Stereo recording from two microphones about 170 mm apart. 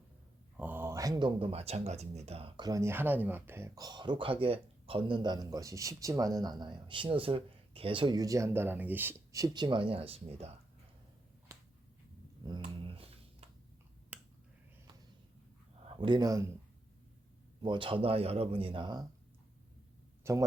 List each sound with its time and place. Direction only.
0.5 s a sound: 10° right (ahead or behind)
1.4 s speech: 35° right (ahead or behind)
11.5 s finger snapping: 15° right (ahead or behind)
12.5 s dog: 30° right (ahead or behind)
14.1 s finger snapping: 10° right (ahead or behind)
15.9 s speech: 30° right (ahead or behind)
17.6 s speech: 30° right (ahead or behind)
20.2 s speech: 15° right (ahead or behind)